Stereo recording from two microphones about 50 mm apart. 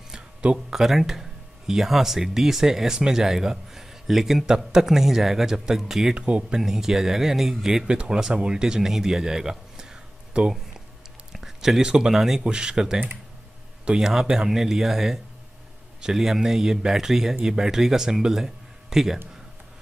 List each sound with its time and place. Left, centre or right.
0.1 s a sound: right
0.7 s speech: centre
6.1 s speech: right
6.6 s speech: centre
7.8 s speech: centre
11.3 s a sound: centre
11.8 s speech: centre